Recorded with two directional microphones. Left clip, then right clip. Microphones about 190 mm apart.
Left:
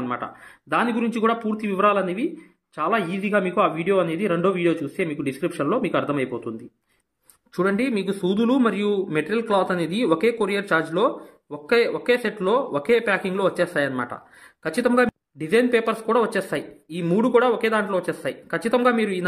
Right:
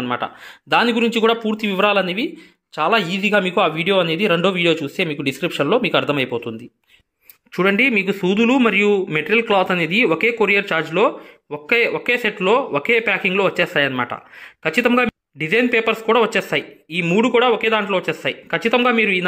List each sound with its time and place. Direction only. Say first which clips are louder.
0.1 s a man's voice: right 6 dB; 25° right (ahead or behind)
7.5 s a man's voice: right 7 dB; 20° right (ahead or behind)